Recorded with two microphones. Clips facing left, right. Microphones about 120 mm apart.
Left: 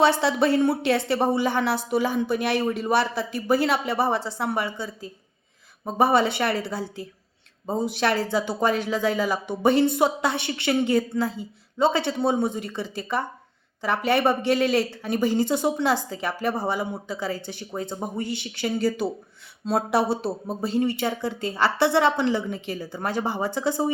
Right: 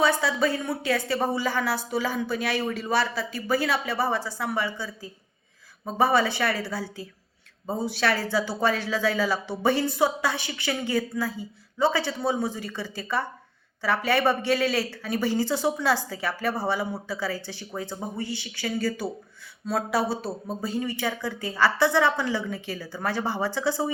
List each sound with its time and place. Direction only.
0.0 s a woman's voice: 25° left (ahead or behind)
7.9 s a woman's voice: 20° left (ahead or behind)